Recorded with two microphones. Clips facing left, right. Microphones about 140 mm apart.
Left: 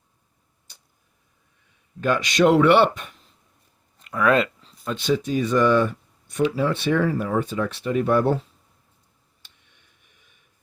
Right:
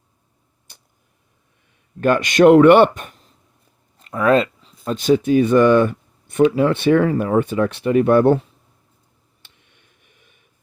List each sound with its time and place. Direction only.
2.0 s speech: 55° right (ahead or behind)
4.0 s speech: 30° right (ahead or behind)
4.9 s speech: 45° right (ahead or behind); by 8.4 s 65° right (ahead or behind)